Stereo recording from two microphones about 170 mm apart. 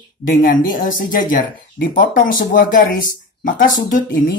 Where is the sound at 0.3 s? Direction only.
55° left (ahead or behind).